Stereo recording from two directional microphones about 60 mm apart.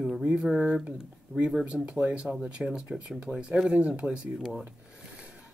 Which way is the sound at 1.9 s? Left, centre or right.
Right.